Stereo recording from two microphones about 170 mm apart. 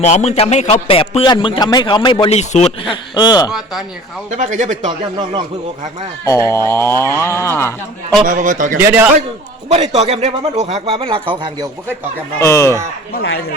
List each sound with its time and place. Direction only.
0.0 s a man's voice: 40° left (ahead or behind); by 3.5 s 25° left (ahead or behind)
3.5 s speech: centre (ahead or behind)
4.4 s speech: 45° right (ahead or behind)
6.2 s speech: 15° left (ahead or behind)
8.3 s speech: 50° right (ahead or behind)
8.8 s a man's voice: 10° right (ahead or behind)
9.6 s speech: 40° right (ahead or behind)
12.4 s speech: 15° left (ahead or behind)
13.1 s speech: 75° left (ahead or behind)